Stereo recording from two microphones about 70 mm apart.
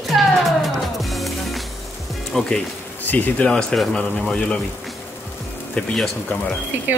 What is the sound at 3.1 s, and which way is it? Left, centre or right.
Speech, left.